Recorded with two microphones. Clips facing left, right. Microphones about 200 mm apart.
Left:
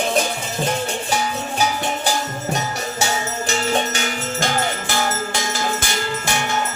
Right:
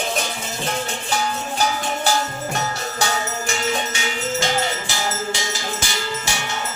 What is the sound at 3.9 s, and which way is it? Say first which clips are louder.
Music: even; 55° left (ahead or behind).